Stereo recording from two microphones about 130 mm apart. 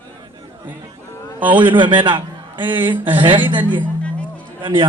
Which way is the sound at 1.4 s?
15° right (ahead or behind).